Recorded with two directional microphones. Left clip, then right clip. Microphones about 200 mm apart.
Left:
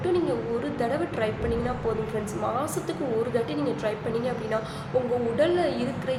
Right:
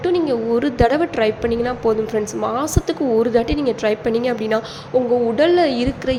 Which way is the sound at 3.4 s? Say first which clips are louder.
Right 9 dB; 45° right (ahead or behind).